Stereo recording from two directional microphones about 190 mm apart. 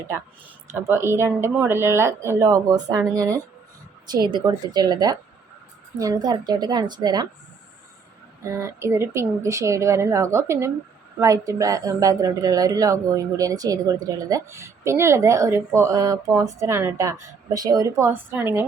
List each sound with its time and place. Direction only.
0.7 s a woman's voice: 15° right (ahead or behind)
8.4 s a woman's voice: 15° right (ahead or behind)